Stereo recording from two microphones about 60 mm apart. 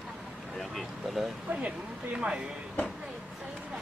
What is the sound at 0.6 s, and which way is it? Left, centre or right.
Speech, centre.